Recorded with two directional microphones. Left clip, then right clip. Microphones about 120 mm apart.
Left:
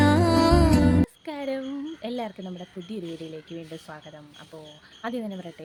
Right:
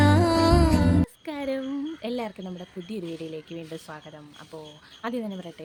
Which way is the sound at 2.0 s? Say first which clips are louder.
Right 1 dB; 10° right (ahead or behind).